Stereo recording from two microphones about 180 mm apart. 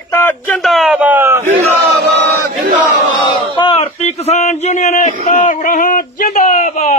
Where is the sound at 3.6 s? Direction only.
30° left (ahead or behind).